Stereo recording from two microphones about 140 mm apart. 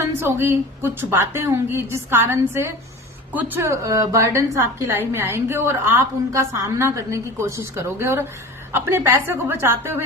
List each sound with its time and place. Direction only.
0.0 s a woman's voice: 15° right (ahead or behind)